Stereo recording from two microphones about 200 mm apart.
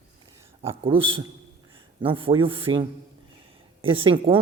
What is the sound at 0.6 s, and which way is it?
A woman's voice, 25° right (ahead or behind).